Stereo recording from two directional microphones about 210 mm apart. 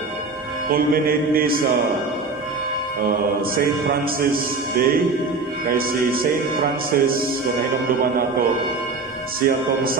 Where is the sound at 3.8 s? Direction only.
45° right (ahead or behind).